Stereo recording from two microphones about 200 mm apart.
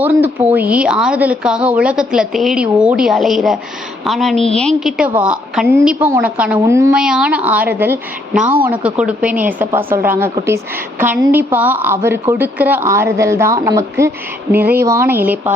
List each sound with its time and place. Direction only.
0.0 s a woman's voice: 10° right (ahead or behind)